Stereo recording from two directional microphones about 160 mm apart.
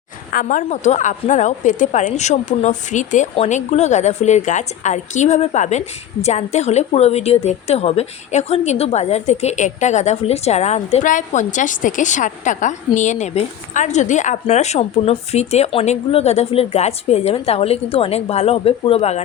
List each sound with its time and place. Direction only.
0.3 s a woman's voice: 60° left (ahead or behind); by 19.2 s 40° left (ahead or behind)